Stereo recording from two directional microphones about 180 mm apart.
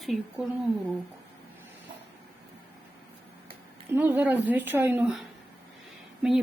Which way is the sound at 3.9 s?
10° right (ahead or behind).